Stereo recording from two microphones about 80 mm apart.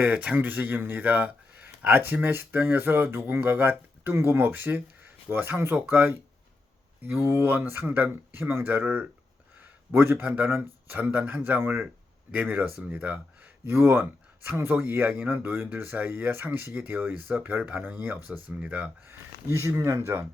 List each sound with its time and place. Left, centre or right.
0.0 s speech: centre
19.0 s speech: right